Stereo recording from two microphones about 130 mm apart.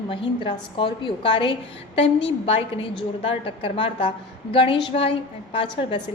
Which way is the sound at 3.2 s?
45° left (ahead or behind).